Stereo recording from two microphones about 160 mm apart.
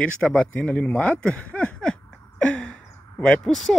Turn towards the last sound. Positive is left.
turn(degrees=5)  # may be behind; listen again after turning